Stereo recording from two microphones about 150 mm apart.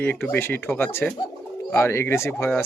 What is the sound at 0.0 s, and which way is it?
Speech, 10° left (ahead or behind).